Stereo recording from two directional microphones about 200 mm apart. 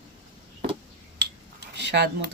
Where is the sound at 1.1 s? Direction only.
60° right (ahead or behind).